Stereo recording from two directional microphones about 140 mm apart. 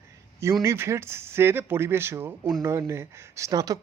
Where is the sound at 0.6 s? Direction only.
20° right (ahead or behind).